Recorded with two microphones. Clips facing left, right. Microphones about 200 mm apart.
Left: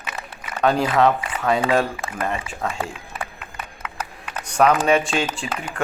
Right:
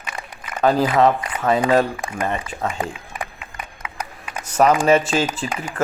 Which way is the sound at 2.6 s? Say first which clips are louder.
Right 1 dB; 15° right (ahead or behind).